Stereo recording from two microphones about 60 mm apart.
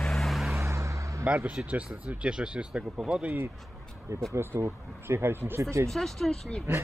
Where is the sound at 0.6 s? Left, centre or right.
Right.